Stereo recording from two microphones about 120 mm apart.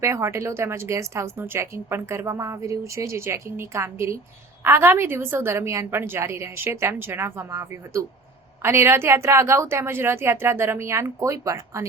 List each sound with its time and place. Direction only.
0.0 s a woman's voice: 25° right (ahead or behind)